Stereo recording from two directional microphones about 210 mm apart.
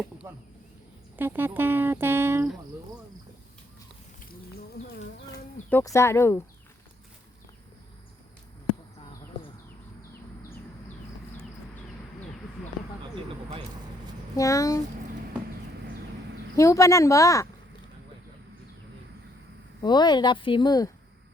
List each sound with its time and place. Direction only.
1.1 s speech: 10° right (ahead or behind)
5.3 s speech: 15° left (ahead or behind)
14.3 s a woman's voice: 15° left (ahead or behind)
16.6 s a woman's voice: 15° left (ahead or behind)
19.8 s a woman's voice: 20° left (ahead or behind)